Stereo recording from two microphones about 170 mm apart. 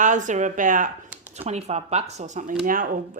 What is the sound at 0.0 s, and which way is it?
Speech, 50° right (ahead or behind).